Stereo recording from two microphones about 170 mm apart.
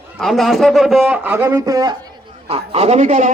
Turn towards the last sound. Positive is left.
turn(degrees=-45)  # may be behind; listen again after turning